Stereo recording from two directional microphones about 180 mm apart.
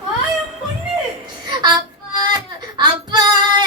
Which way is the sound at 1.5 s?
25° right (ahead or behind).